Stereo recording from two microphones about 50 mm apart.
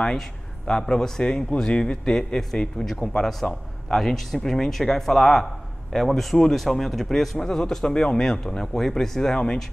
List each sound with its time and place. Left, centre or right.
0.0 s speech: centre